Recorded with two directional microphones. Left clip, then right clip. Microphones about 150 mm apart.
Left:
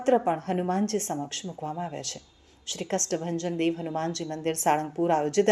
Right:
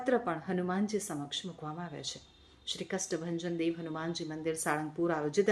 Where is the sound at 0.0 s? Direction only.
10° left (ahead or behind).